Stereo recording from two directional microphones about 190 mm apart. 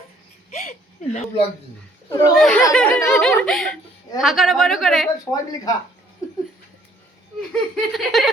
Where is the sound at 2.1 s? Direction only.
15° left (ahead or behind).